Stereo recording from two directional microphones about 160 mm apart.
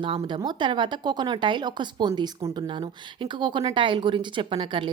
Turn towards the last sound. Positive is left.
turn(degrees=-30)  # may be behind; listen again after turning